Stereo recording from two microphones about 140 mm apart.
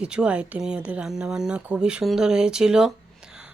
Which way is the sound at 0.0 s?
5° right (ahead or behind).